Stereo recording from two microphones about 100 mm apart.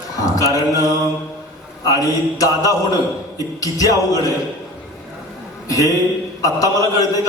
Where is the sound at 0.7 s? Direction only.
35° right (ahead or behind).